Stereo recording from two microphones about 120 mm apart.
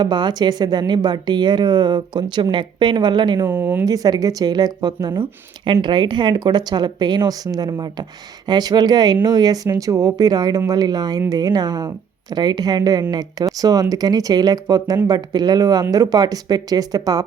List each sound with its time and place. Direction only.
0.0 s speech: 35° right (ahead or behind)
3.4 s speech: 20° right (ahead or behind)
3.8 s speech: 30° right (ahead or behind)